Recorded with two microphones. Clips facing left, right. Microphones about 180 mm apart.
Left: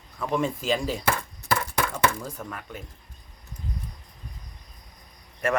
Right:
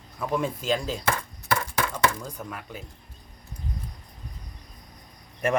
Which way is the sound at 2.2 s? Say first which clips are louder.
Left 1 dB; 5° right (ahead or behind).